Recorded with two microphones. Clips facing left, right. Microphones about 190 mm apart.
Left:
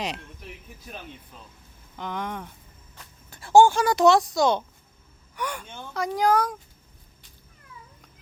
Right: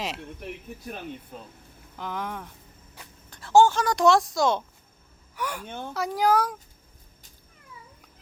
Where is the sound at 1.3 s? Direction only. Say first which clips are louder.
Right 6 dB; 50° right (ahead or behind).